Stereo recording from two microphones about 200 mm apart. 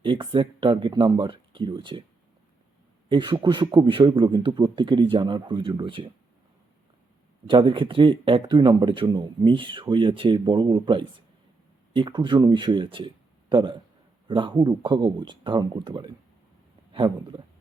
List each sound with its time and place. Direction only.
0.0 s speech: 25° right (ahead or behind)
3.1 s speech: 20° right (ahead or behind)
7.4 s speech: 25° right (ahead or behind)